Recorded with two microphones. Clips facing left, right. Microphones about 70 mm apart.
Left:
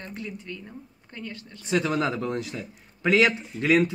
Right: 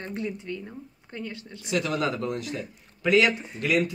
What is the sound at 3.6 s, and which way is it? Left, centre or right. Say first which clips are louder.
Speech: left 4 dB; left.